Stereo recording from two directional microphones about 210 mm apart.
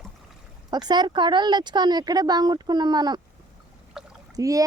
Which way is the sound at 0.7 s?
20° right (ahead or behind).